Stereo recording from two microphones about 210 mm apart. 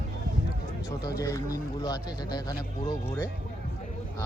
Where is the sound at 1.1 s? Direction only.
15° left (ahead or behind).